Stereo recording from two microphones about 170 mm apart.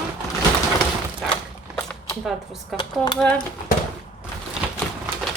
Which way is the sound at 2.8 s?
25° left (ahead or behind).